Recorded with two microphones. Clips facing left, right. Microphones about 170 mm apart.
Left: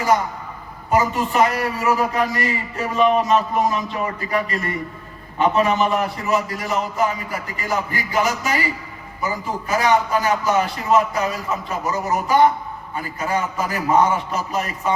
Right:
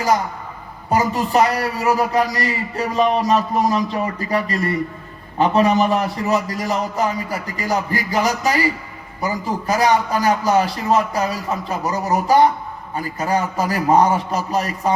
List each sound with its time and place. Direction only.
0.9 s a man's voice: 35° right (ahead or behind)